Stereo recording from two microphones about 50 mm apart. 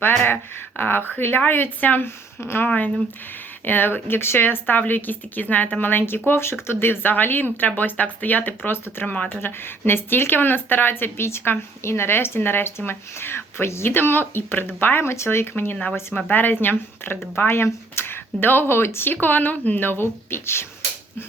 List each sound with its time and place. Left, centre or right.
0.0 s a sound: left
0.8 s speech: left
2.0 s speech: left
2.6 s a woman's voice: left
9.1 s speech: left
9.4 s speech: left
13.9 s speech: left
15.1 s speech: left
19.1 s a woman's voice: left